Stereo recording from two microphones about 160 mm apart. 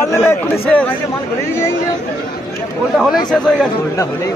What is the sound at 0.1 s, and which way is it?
Speech, 15° left (ahead or behind).